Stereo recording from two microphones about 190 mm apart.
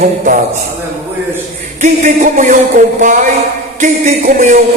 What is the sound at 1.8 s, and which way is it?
Speech, 40° right (ahead or behind).